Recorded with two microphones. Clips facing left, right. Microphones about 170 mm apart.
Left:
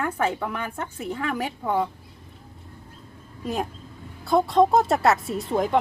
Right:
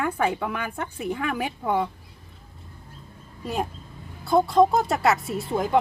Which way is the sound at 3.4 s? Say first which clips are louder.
Even; centre (ahead or behind).